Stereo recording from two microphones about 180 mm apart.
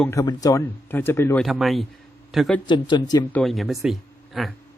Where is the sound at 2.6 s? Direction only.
25° left (ahead or behind).